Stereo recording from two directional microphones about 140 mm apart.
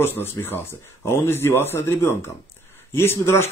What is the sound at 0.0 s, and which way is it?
Speech, 15° left (ahead or behind).